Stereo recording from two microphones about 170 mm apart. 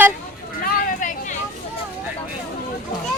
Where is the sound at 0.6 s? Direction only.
50° left (ahead or behind).